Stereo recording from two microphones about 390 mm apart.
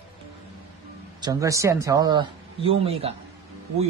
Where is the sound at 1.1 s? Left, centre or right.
Centre.